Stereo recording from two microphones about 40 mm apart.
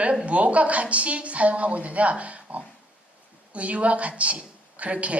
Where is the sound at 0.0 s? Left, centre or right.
Right.